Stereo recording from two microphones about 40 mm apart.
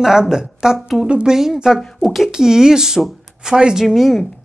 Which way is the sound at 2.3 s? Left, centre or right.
Centre.